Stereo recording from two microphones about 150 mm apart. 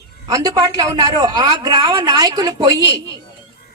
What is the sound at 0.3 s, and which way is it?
A woman's voice, 25° right (ahead or behind).